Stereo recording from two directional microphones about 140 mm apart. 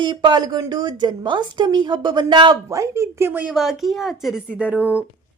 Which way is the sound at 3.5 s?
Centre (ahead or behind).